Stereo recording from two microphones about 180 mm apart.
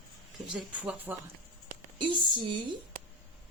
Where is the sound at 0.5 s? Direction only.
5° right (ahead or behind).